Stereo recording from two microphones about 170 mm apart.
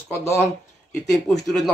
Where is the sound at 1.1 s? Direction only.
Centre (ahead or behind).